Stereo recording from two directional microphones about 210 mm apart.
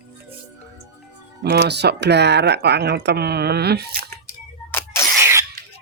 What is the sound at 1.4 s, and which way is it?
Speech, 50° right (ahead or behind).